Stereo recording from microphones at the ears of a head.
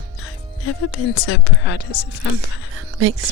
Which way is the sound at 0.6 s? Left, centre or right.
Left.